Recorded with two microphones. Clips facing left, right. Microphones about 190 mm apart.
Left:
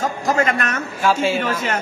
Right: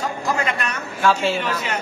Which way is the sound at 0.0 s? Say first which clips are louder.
Left 4 dB; 45° left (ahead or behind).